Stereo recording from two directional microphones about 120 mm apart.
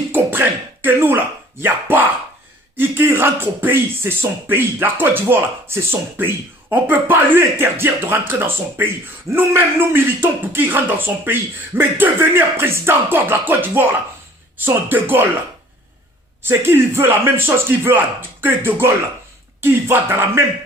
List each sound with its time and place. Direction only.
0.1 s speech: 15° right (ahead or behind)
16.4 s a man's voice: 20° right (ahead or behind)